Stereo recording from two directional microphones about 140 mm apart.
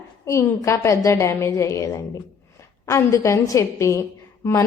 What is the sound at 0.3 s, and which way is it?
A woman's voice, 20° left (ahead or behind).